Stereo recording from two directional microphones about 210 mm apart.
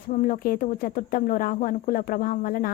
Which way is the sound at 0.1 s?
40° left (ahead or behind).